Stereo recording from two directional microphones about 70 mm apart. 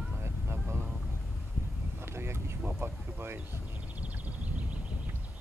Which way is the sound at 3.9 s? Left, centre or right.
Right.